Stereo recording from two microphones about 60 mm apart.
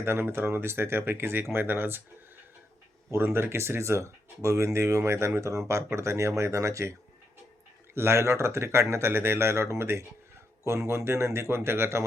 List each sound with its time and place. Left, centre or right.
0.0 s speech: right
3.1 s speech: right
7.9 s speech: right